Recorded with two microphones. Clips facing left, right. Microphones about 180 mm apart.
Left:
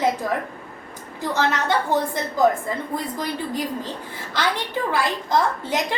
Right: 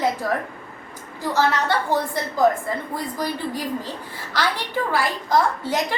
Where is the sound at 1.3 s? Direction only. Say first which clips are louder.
Right 1 dB; 20° left (ahead or behind).